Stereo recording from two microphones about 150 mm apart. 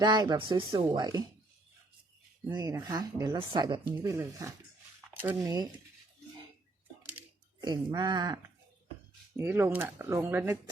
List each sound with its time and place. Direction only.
0.0 s speech: 30° right (ahead or behind)
2.5 s speech: 25° right (ahead or behind)
7.6 s speech: 30° right (ahead or behind)
9.4 s speech: 15° right (ahead or behind)